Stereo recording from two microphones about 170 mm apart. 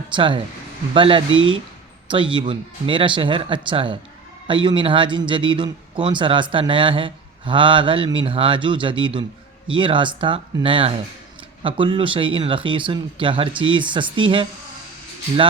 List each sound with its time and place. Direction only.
0.1 s a man's voice: 30° right (ahead or behind)